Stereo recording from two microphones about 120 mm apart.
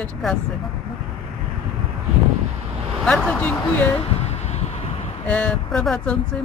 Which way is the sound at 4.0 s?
60° left (ahead or behind).